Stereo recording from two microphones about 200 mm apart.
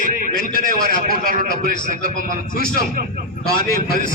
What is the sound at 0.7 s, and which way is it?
A man's voice, 50° left (ahead or behind).